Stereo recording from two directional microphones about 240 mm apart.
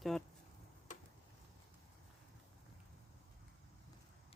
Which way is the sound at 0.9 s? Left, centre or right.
Left.